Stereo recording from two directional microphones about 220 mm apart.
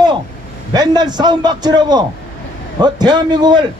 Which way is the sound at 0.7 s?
20° right (ahead or behind).